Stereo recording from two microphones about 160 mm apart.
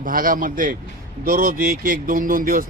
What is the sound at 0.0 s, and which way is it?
Speech, 60° right (ahead or behind).